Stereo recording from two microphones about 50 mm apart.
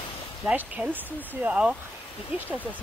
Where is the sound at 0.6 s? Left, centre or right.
Right.